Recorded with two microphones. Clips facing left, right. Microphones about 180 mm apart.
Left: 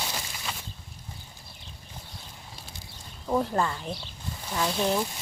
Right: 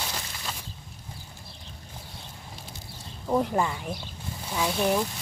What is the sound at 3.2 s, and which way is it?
Speech, 10° right (ahead or behind).